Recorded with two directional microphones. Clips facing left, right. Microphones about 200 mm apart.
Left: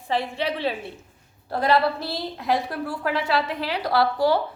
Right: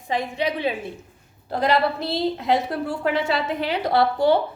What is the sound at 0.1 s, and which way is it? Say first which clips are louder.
A woman's voice: right 1 dB; 15° right (ahead or behind).